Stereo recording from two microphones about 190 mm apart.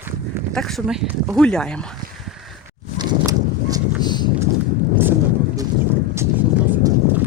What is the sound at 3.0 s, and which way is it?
Horse, 20° right (ahead or behind).